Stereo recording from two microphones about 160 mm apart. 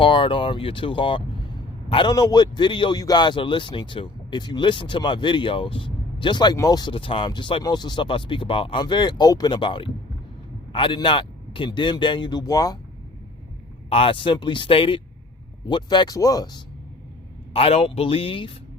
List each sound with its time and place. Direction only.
0.0 s a man's voice: 30° left (ahead or behind)
13.9 s a man's voice: 35° left (ahead or behind)
17.5 s speech: 35° left (ahead or behind)